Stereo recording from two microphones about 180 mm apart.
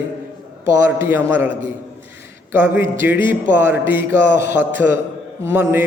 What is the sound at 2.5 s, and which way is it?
A man's voice, 10° right (ahead or behind).